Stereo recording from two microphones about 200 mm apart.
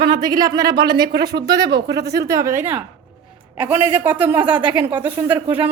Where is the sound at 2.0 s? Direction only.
55° right (ahead or behind).